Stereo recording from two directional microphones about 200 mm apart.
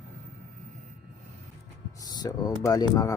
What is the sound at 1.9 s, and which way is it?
Speech, 15° left (ahead or behind).